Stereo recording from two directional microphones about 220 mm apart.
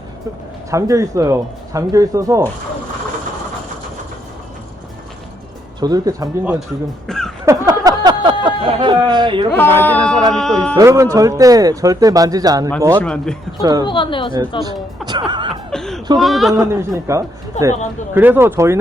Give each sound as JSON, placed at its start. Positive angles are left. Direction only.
{"t": 0.7, "sound": "speech", "side_deg": -15}
{"t": 5.8, "sound": "speech", "side_deg": -15}
{"t": 7.1, "sound": "a man's voice", "side_deg": 0}
{"t": 7.4, "sound": "a sound", "side_deg": -15}
{"t": 8.4, "sound": "speech", "side_deg": -20}
{"t": 9.6, "sound": "a man's voice", "side_deg": 10}
{"t": 10.8, "sound": "speech", "side_deg": -15}
{"t": 13.0, "sound": "a man's voice", "side_deg": 5}
{"t": 13.6, "sound": "speech", "side_deg": -15}
{"t": 13.8, "sound": "speech", "side_deg": 20}
{"t": 15.3, "sound": "speech", "side_deg": -20}
{"t": 15.7, "sound": "a sound", "side_deg": 0}
{"t": 16.1, "sound": "a man's voice", "side_deg": 0}
{"t": 16.6, "sound": "speech", "side_deg": -15}